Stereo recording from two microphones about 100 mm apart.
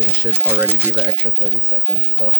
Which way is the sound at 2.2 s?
90° right.